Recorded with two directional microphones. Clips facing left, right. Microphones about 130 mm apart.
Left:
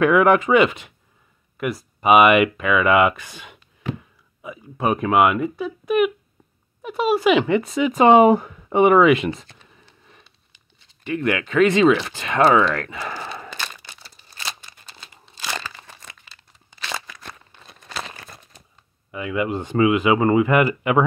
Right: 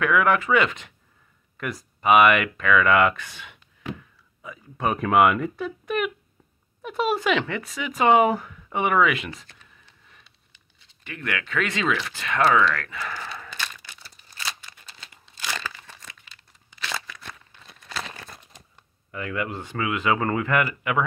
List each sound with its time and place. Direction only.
0.0 s speech: 25° left (ahead or behind)
11.1 s a sound: 25° left (ahead or behind)
15.5 s crumpling: 35° left (ahead or behind)
17.1 s a sound: 35° left (ahead or behind)
19.1 s speech: 15° left (ahead or behind)
20.6 s speech: 25° left (ahead or behind)